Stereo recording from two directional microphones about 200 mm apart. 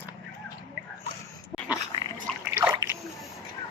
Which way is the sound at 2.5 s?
10° right (ahead or behind).